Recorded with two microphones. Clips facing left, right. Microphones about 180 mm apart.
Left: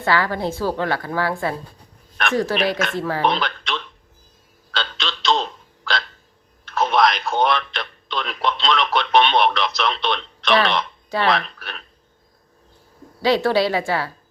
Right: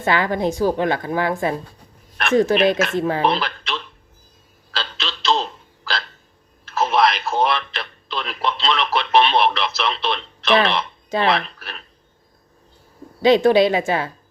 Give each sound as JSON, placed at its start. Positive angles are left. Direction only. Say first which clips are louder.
{"t": 0.0, "sound": "a woman's voice", "louder": "right 2 dB", "side_deg": -20}
{"t": 3.2, "sound": "a sound", "louder": "right 1 dB", "side_deg": -5}
{"t": 4.7, "sound": "frog", "louder": "left 1 dB", "side_deg": -5}
{"t": 6.7, "sound": "telephone", "louder": "even", "side_deg": -5}
{"t": 11.3, "sound": "speech", "louder": "even", "side_deg": 0}
{"t": 13.2, "sound": "a woman's voice", "louder": "right 4 dB", "side_deg": -20}